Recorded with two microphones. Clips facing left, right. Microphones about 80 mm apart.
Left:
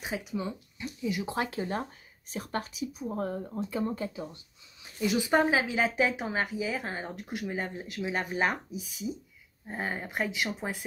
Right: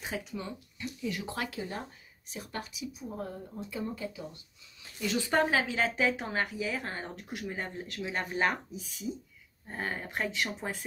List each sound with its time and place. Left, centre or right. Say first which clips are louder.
0.0 s speech: left 4 dB; centre
1.3 s speech: left 5 dB; left
4.8 s a woman's voice: left 4 dB; centre